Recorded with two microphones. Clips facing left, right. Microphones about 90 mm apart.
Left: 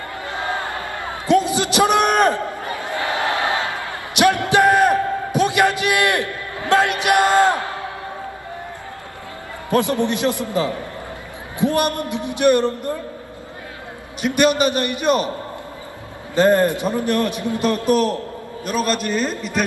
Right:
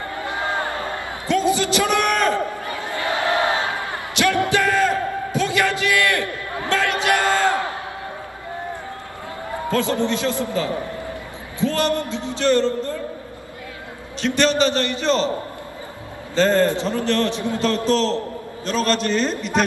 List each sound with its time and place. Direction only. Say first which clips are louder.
0.2 s a sound: right 1 dB; 20° right (ahead or behind)
1.2 s a man's voice: left 2 dB; 20° left (ahead or behind)
4.1 s a sound: left 3 dB; 20° left (ahead or behind)
6.7 s music: left 4 dB; 20° left (ahead or behind)
9.7 s a man's voice: left 2 dB; 20° left (ahead or behind)
14.2 s a man's voice: left 2 dB; 15° left (ahead or behind)
16.3 s a man's voice: left 2 dB; 15° left (ahead or behind)